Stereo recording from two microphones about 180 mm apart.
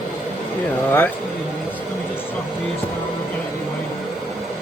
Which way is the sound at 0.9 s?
10° left (ahead or behind).